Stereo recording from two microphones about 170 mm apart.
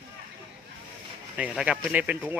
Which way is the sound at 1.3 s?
5° right (ahead or behind).